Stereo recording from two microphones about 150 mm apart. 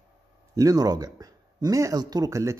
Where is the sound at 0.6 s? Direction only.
25° right (ahead or behind).